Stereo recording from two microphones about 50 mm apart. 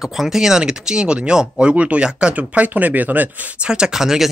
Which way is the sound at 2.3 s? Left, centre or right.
Right.